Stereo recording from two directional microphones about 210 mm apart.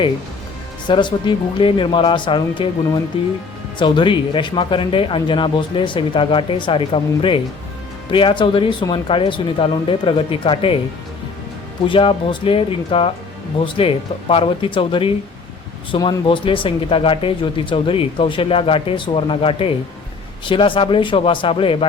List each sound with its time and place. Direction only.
0.9 s speech: 20° left (ahead or behind)
11.9 s speech: 25° left (ahead or behind)